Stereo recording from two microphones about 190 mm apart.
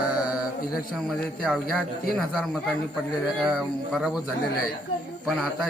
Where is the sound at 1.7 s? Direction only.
Centre (ahead or behind).